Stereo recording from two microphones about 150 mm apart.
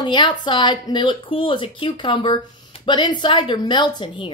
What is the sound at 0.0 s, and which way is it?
A man's voice, 30° left (ahead or behind).